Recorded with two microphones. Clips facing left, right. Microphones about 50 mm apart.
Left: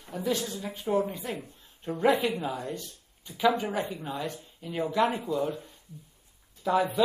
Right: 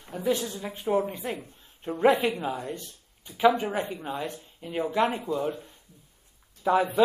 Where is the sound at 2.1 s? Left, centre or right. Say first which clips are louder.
Right 1 dB; right.